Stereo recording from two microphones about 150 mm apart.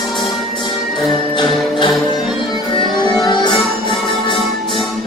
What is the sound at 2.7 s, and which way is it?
Music, 30° left (ahead or behind).